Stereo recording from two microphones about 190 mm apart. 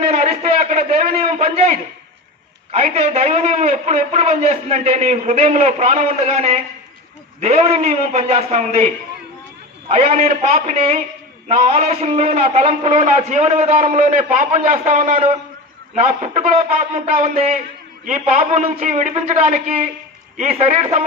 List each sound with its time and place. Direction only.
0.0 s a sound: 35° right (ahead or behind)
2.7 s a man's voice: 35° right (ahead or behind)
9.9 s a man's voice: 35° right (ahead or behind)